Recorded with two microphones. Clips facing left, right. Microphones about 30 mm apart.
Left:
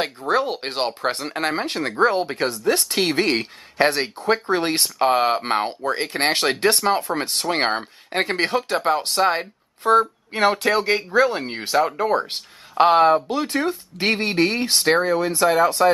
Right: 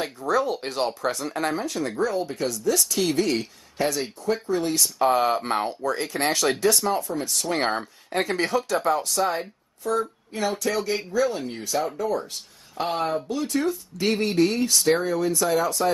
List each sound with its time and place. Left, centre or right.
0.3 s speech: left